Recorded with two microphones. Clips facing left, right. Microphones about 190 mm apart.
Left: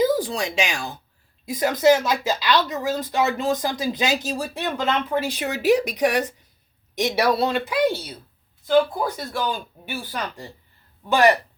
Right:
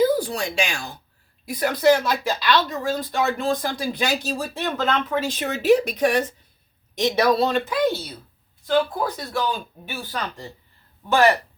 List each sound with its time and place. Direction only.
0.2 s speech: 20° left (ahead or behind)